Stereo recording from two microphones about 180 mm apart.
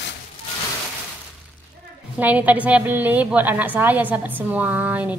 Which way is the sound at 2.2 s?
10° right (ahead or behind).